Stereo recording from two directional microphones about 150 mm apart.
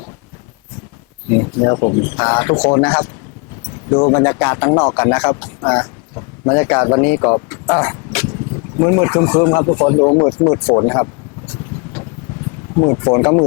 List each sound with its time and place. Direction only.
1.3 s speech: 25° left (ahead or behind)
2.2 s speech: 15° left (ahead or behind)
3.9 s speech: 25° left (ahead or behind)
4.7 s speech: 30° left (ahead or behind)
4.9 s speech: 15° left (ahead or behind)
7.8 s vehicle: 15° left (ahead or behind)
8.8 s speech: 20° left (ahead or behind)
12.8 s speech: 25° left (ahead or behind)